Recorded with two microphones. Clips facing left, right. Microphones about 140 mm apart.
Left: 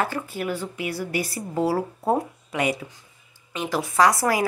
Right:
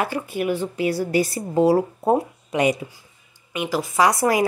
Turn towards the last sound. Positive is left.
turn(degrees=-20)  # may be behind; listen again after turning